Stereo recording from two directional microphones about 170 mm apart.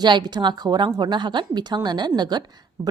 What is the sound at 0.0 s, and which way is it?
A woman's voice, 25° right (ahead or behind).